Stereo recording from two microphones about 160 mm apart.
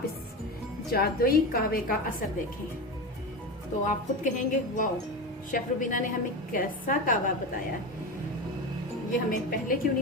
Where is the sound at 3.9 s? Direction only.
55° left (ahead or behind).